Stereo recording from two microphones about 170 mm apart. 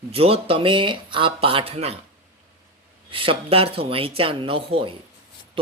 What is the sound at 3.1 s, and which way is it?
Speech, 30° right (ahead or behind).